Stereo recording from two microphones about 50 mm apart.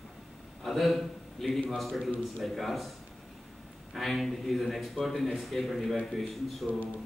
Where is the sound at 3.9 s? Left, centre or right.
Centre.